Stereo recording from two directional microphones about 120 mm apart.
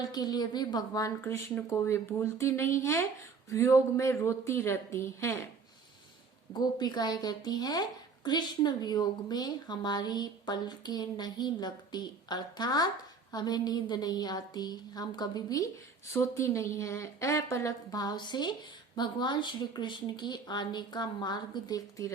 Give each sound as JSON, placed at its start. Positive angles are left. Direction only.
{"t": 0.0, "sound": "speech", "side_deg": 35}
{"t": 1.2, "sound": "a woman's voice", "side_deg": 20}
{"t": 6.5, "sound": "a woman's voice", "side_deg": 35}